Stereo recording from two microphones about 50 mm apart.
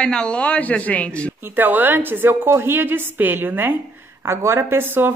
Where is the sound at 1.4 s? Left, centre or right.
Right.